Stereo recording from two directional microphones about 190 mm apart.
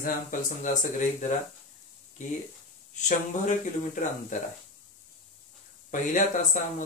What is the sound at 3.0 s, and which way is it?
Speech, 40° left (ahead or behind).